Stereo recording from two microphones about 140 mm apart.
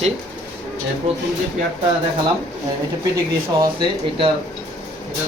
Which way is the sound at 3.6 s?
35° right (ahead or behind).